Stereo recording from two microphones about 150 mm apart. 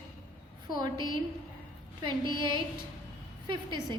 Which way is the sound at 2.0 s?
30° right (ahead or behind).